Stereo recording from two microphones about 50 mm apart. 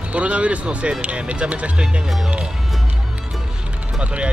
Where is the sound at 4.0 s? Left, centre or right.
Right.